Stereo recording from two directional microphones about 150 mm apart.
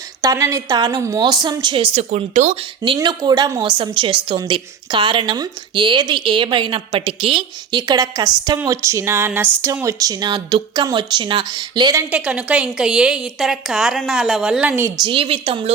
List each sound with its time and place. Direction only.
0.2 s a woman's voice: 20° right (ahead or behind)
12.1 s a woman's voice: 10° right (ahead or behind)
15.0 s a woman's voice: 35° right (ahead or behind)